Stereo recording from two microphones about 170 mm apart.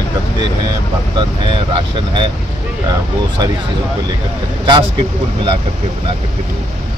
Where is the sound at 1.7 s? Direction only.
30° right (ahead or behind).